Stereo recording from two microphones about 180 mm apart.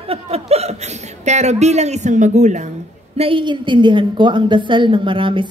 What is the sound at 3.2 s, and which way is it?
A woman's voice, 30° right (ahead or behind).